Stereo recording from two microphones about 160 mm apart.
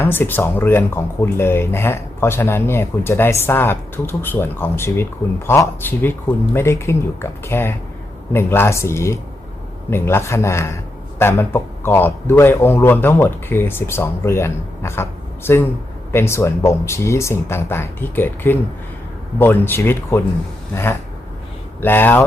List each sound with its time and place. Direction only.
0.0 s speech: 15° left (ahead or behind)
21.8 s speech: 15° left (ahead or behind)